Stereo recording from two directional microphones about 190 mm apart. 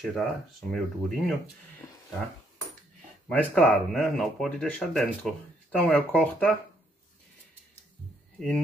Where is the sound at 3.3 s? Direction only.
5° left (ahead or behind).